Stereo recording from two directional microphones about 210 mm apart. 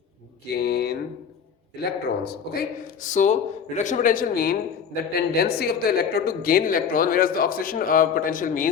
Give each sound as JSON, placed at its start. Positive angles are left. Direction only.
{"t": 0.5, "sound": "speech", "side_deg": 50}